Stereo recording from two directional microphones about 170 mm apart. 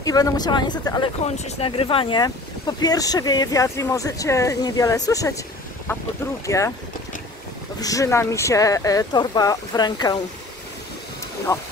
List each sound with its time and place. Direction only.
0.0 s speech: 20° left (ahead or behind)
1.2 s speech: 35° left (ahead or behind); by 6.7 s 20° left (ahead or behind)
7.8 s speech: 20° left (ahead or behind)
11.5 s speech: 15° left (ahead or behind)